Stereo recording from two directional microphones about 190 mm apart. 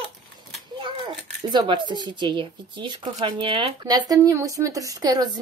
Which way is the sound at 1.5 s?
25° right (ahead or behind).